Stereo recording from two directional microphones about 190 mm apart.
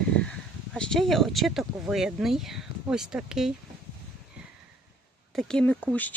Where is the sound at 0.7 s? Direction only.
Centre (ahead or behind).